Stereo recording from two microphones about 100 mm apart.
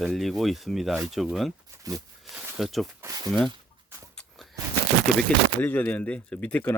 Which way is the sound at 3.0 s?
35° right (ahead or behind).